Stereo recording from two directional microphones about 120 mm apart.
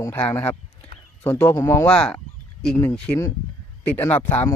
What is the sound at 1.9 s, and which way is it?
Speech, 10° left (ahead or behind).